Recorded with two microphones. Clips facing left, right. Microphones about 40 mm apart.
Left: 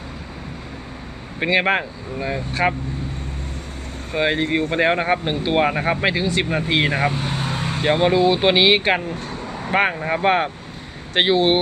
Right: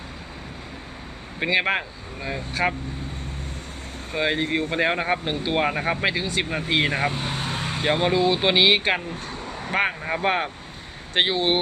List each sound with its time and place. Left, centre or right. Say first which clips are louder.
1.4 s speech: left 4 dB; centre
4.1 s speech: left 4 dB; centre
7.3 s speech: left 3 dB; centre
9.2 s vehicle: left 4 dB; left
9.6 s speech: left 5 dB; centre